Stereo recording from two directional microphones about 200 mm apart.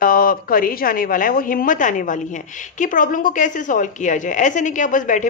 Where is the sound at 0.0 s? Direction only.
45° left (ahead or behind).